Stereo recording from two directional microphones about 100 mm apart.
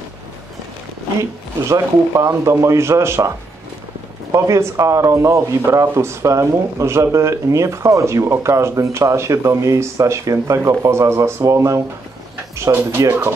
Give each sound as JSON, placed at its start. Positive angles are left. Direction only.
{"t": 1.7, "sound": "speech", "side_deg": -30}